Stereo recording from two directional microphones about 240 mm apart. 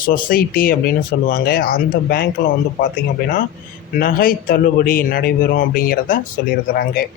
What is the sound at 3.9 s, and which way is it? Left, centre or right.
Speech, left.